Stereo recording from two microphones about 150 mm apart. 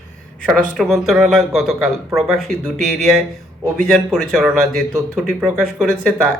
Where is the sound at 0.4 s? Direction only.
5° left (ahead or behind).